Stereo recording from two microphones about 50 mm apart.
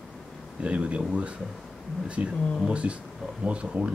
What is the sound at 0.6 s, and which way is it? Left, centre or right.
Speech, right.